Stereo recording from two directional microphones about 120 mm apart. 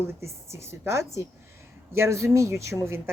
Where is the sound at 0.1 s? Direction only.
20° right (ahead or behind).